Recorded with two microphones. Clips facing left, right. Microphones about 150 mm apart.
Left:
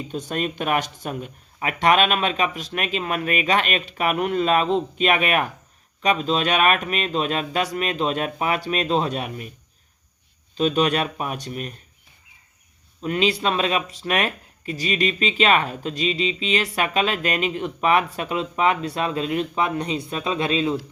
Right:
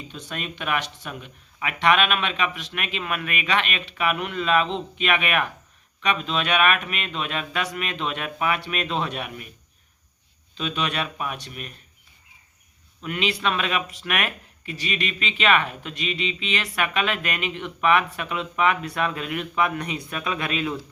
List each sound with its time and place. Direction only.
0.1 s speech: 45° left (ahead or behind)
10.6 s speech: 40° left (ahead or behind)
13.0 s speech: 35° left (ahead or behind)